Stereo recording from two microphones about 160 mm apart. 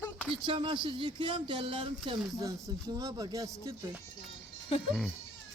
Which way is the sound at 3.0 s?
20° right (ahead or behind).